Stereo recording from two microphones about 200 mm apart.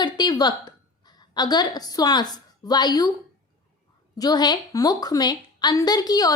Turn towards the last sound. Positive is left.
turn(degrees=20)  # may be behind; listen again after turning